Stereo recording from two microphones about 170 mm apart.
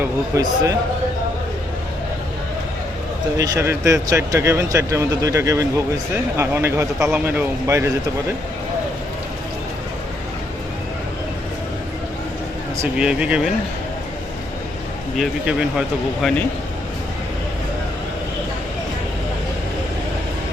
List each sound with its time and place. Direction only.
0.0 s speech: 20° right (ahead or behind)
3.3 s speech: 20° right (ahead or behind)
13.0 s speech: 5° right (ahead or behind)
15.1 s speech: centre (ahead or behind)